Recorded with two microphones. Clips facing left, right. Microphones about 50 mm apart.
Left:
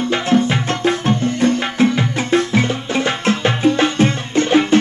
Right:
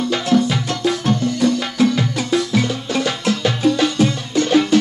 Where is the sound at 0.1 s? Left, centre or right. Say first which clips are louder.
Left 1 dB; left.